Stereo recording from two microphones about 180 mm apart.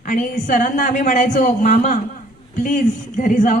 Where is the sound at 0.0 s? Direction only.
45° left (ahead or behind).